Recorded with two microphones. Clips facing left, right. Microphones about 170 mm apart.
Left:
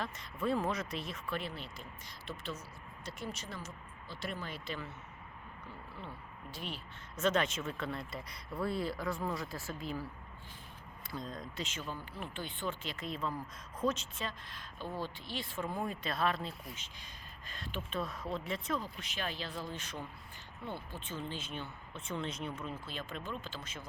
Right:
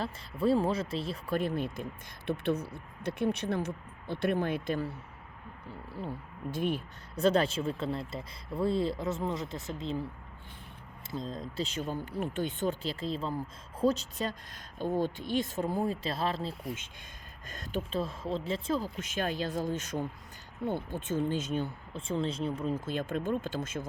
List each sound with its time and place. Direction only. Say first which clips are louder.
0.0 s speech: right 7 dB; 30° right (ahead or behind)
1.4 s speech: right 11 dB; 50° right (ahead or behind)
5.9 s speech: right 12 dB; 40° right (ahead or behind)
7.2 s speech: right 6 dB; 35° right (ahead or behind)
11.1 s speech: right 5 dB; 25° right (ahead or behind)
17.5 s speech: right 6 dB; 45° right (ahead or behind)
18.0 s speech: right 5 dB; 25° right (ahead or behind)
18.9 s speech: right 8 dB; 45° right (ahead or behind)